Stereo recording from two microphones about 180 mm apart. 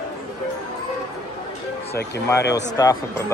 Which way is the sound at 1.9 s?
65° left (ahead or behind).